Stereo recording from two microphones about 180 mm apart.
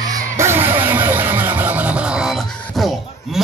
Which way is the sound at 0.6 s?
30° right (ahead or behind).